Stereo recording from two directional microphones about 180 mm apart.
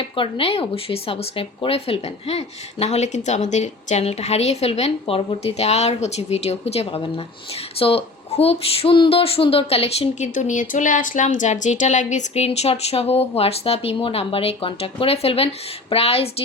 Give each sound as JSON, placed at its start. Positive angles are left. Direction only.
{"t": 0.0, "sound": "speech", "side_deg": 30}